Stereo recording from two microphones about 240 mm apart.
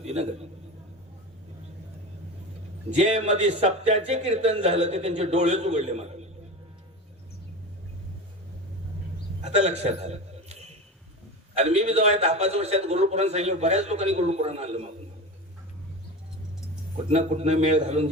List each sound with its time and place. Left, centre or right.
0.0 s a man's voice: right
2.9 s a man's voice: right
9.4 s a sound: right
11.5 s a man's voice: right
17.1 s a man's voice: right